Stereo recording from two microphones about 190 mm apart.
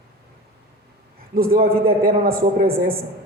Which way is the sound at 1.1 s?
50° right (ahead or behind).